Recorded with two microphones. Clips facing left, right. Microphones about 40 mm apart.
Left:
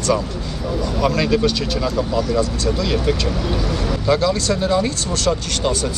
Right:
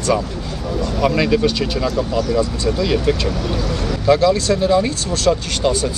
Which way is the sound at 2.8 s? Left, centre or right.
Centre.